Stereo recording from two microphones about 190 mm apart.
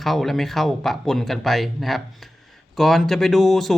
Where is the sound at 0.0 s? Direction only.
Centre (ahead or behind).